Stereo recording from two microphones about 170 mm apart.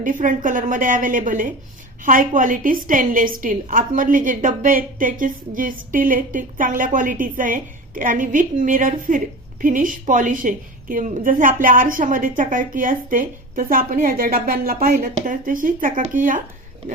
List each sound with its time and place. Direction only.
0.0 s a woman's voice: 50° right (ahead or behind)